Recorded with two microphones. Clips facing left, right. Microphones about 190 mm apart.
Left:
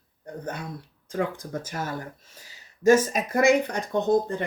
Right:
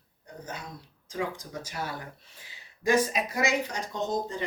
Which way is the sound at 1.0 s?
55° left (ahead or behind).